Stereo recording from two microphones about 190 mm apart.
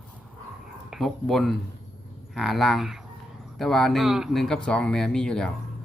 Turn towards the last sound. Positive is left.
turn(degrees=5)  # may be behind; listen again after turning